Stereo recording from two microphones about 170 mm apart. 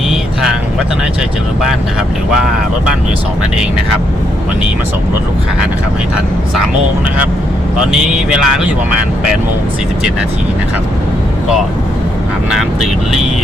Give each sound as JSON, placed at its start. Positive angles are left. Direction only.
{"t": 8.1, "sound": "speech", "side_deg": -5}
{"t": 12.5, "sound": "speech", "side_deg": 0}